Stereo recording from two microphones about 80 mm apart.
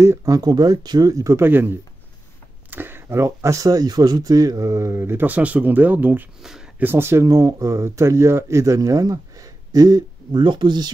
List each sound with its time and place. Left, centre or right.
0.0 s speech: right
0.4 s speech: right
1.4 s speech: right